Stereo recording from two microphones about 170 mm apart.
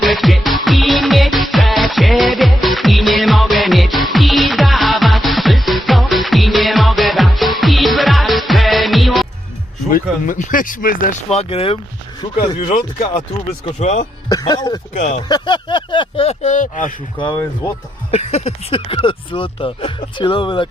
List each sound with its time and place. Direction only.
0.0 s music: centre (ahead or behind)
9.9 s speech: 50° left (ahead or behind)
11.3 s speech: 35° left (ahead or behind)
14.3 s a sound: 20° left (ahead or behind)
14.9 s speech: 45° left (ahead or behind)
15.3 s speech: 25° left (ahead or behind); by 16.9 s 50° left (ahead or behind)
18.1 s speech: 40° left (ahead or behind)